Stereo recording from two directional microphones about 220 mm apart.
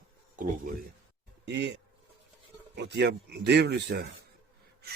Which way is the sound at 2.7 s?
50° right (ahead or behind).